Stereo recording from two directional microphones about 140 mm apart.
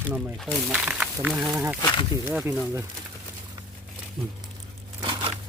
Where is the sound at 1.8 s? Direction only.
30° left (ahead or behind).